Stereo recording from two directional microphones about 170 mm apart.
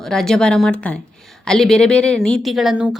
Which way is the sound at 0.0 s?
5° left (ahead or behind).